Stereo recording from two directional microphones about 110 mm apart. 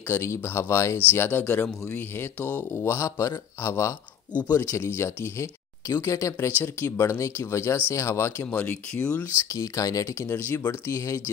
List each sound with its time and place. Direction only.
0.1 s speech: 25° left (ahead or behind)
9.5 s speech: 30° left (ahead or behind)